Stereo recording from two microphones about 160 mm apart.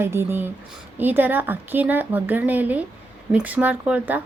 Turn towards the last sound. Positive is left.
turn(degrees=-10)  # may be behind; listen again after turning